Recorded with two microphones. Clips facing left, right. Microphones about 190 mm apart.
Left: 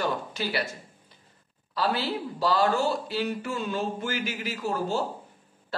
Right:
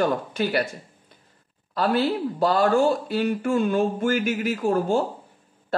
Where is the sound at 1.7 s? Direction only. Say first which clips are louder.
Right 6 dB; 50° right (ahead or behind).